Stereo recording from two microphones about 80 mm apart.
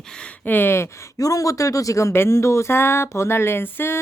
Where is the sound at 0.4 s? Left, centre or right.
Left.